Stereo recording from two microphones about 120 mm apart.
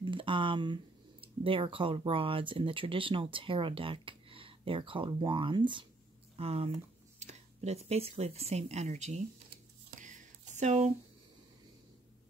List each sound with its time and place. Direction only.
0.0 s speech: 45° right (ahead or behind)
6.3 s speech: 55° right (ahead or behind)
7.2 s speech: 70° right (ahead or behind)
9.9 s a sound: 90° right; by 10.9 s 70° right (ahead or behind)